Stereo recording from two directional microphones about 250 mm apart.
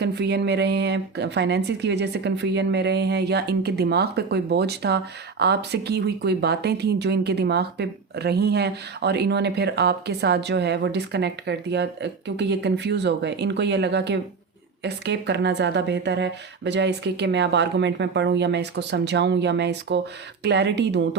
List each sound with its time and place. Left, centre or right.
0.0 s speech: right